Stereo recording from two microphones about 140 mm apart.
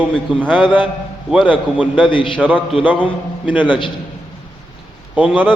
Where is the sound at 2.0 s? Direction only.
35° left (ahead or behind).